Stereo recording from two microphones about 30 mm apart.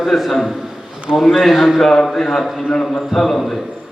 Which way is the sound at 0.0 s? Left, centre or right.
Centre.